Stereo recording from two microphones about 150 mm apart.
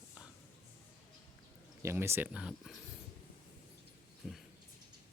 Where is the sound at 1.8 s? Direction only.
15° right (ahead or behind).